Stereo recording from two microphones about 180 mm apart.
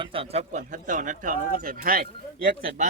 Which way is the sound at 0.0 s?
30° right (ahead or behind).